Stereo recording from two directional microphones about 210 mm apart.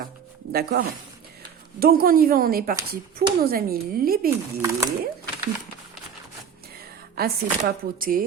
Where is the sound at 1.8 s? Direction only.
45° right (ahead or behind).